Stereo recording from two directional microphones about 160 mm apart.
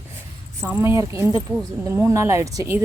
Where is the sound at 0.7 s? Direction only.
15° right (ahead or behind).